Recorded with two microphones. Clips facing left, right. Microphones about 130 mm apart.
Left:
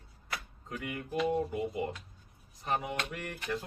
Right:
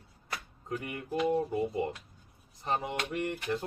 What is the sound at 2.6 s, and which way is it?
Speech, 25° right (ahead or behind).